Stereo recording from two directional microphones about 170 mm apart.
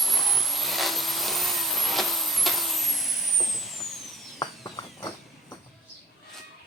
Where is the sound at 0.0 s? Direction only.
Centre (ahead or behind).